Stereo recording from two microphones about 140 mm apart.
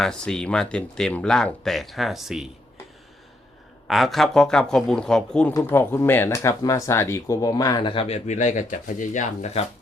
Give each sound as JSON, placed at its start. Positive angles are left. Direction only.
{"t": 0.0, "sound": "speech", "side_deg": 5}
{"t": 3.8, "sound": "speech", "side_deg": 0}